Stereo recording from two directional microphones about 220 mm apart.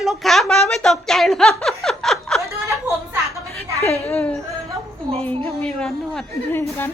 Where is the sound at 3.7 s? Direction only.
30° left (ahead or behind).